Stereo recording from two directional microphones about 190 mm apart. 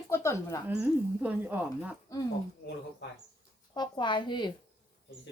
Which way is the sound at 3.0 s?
65° left (ahead or behind).